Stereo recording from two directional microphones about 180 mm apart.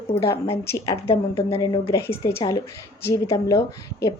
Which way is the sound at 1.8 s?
15° left (ahead or behind).